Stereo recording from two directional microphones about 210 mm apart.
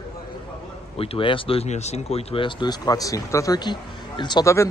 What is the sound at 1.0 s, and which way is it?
Speech, 25° left (ahead or behind).